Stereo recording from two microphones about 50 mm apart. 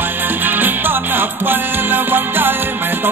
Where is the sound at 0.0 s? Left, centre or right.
Right.